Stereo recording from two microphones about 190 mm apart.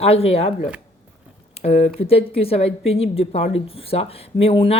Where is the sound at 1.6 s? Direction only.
30° left (ahead or behind).